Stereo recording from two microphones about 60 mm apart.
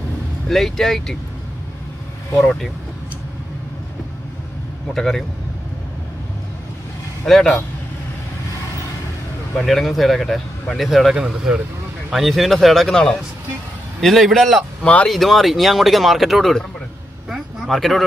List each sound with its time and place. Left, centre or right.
0.5 s speech: centre
2.4 s speech: centre
4.9 s speech: centre
7.2 s speech: centre
9.6 s speech: centre
11.1 s speech: centre
12.1 s speech: centre
14.0 s speech: centre
14.8 s speech: left
15.0 s speech: centre
17.6 s speech: centre